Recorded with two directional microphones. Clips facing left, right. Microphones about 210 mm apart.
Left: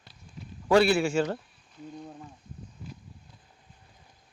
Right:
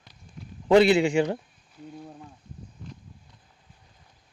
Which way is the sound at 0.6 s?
20° right (ahead or behind).